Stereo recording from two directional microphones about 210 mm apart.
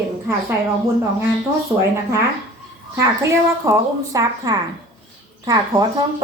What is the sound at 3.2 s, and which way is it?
A woman's voice, 15° right (ahead or behind).